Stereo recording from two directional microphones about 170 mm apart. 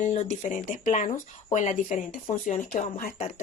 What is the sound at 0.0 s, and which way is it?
Speech, 45° left (ahead or behind).